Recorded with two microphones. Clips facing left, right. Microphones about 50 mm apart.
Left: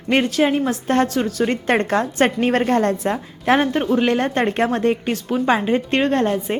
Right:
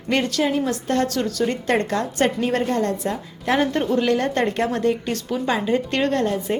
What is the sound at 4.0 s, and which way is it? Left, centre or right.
A woman's voice, left.